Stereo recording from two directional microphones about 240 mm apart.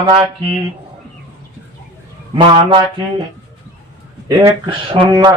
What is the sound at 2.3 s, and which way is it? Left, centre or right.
Speech, right.